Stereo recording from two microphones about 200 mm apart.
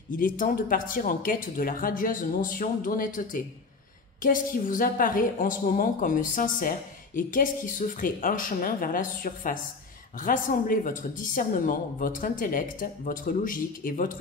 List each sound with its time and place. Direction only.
0.1 s speech: 45° left (ahead or behind)